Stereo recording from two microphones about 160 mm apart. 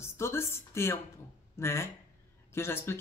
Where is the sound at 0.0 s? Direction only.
15° left (ahead or behind).